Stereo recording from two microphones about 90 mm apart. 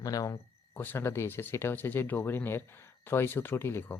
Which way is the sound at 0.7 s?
20° left (ahead or behind).